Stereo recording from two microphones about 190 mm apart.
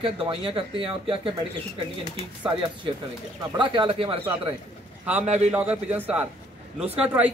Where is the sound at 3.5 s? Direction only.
25° right (ahead or behind).